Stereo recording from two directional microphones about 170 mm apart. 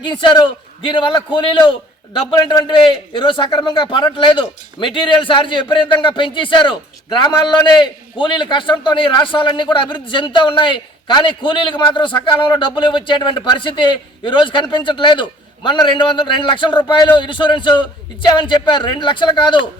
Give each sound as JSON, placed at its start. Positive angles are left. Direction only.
{"t": 0.0, "sound": "speech", "side_deg": 30}